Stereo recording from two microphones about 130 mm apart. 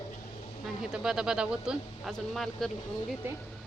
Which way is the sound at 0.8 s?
5° right (ahead or behind).